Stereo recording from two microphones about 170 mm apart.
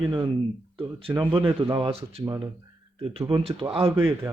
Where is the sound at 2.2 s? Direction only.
20° right (ahead or behind).